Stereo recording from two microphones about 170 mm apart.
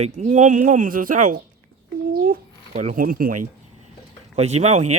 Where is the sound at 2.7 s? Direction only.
45° right (ahead or behind).